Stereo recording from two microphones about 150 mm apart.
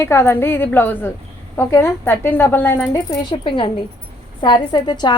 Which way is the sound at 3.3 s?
35° left (ahead or behind).